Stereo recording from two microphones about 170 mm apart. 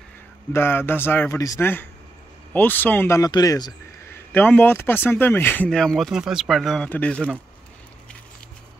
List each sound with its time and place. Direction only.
0.5 s speech: 15° left (ahead or behind)
4.1 s speech: 10° left (ahead or behind)